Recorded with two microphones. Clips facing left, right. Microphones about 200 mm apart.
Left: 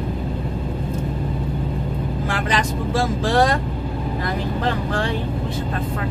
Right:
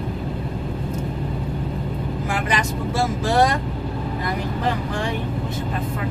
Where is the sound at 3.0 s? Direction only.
90° left.